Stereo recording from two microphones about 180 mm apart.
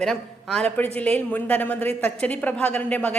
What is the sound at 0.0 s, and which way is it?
A woman's voice, 5° left (ahead or behind).